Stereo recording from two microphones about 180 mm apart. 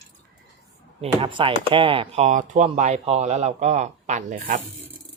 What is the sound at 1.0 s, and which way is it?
Speech, 30° right (ahead or behind).